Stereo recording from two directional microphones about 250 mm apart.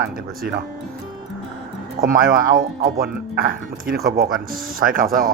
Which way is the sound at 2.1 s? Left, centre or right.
Right.